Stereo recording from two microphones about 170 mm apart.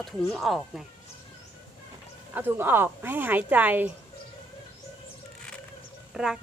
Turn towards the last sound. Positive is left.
turn(degrees=-5)  # may be behind; listen again after turning